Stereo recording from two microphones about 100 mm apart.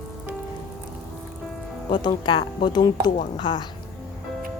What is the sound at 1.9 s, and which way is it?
Speech, 50° left (ahead or behind).